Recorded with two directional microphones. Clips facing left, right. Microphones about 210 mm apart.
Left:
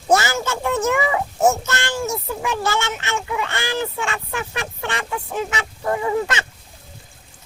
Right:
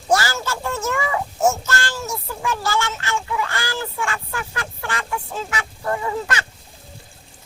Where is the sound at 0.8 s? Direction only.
15° left (ahead or behind).